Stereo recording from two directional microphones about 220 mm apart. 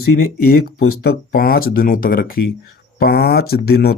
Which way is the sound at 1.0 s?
40° left (ahead or behind).